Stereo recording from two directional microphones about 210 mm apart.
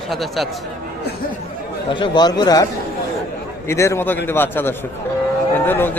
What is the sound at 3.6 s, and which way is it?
A man's voice, 15° left (ahead or behind).